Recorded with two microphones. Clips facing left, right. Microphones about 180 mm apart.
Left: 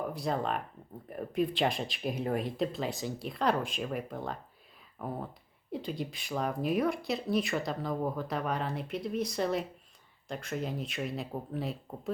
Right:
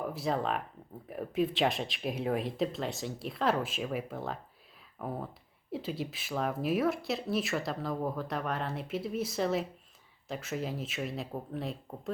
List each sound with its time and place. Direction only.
0.1 s speech: centre (ahead or behind)